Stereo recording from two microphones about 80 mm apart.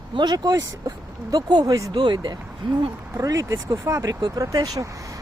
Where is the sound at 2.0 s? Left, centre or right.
Right.